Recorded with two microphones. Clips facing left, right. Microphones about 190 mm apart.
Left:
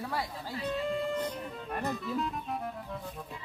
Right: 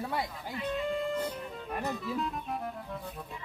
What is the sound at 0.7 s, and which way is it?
Music, centre (ahead or behind).